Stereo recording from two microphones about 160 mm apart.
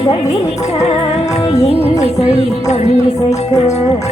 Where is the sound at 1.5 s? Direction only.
40° left (ahead or behind).